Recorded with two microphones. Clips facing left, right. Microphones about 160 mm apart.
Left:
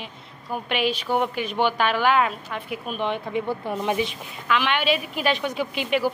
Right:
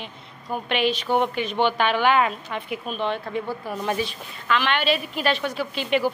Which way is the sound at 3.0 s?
15° left (ahead or behind).